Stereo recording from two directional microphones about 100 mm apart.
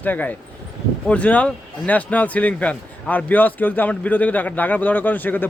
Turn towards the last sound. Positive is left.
turn(degrees=20)  # may be behind; listen again after turning